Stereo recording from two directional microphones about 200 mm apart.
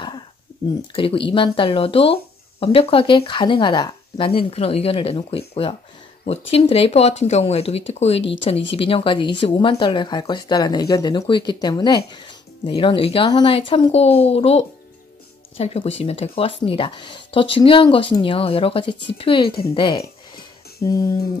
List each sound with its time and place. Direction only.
0.9 s speech: 25° left (ahead or behind)